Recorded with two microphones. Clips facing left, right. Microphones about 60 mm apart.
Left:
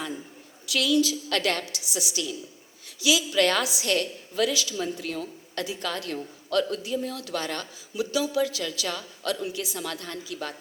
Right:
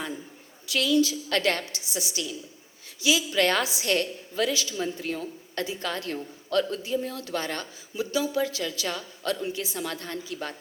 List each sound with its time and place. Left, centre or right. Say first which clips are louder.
0.7 s a woman's voice: even; right